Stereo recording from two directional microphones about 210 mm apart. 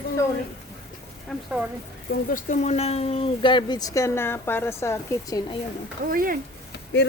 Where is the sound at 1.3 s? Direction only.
5° left (ahead or behind).